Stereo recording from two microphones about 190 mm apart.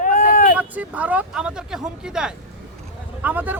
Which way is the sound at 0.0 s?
40° left (ahead or behind).